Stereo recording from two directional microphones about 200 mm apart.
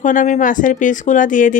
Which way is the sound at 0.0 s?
40° left (ahead or behind).